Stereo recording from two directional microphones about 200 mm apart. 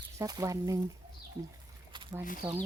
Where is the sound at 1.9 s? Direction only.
25° right (ahead or behind).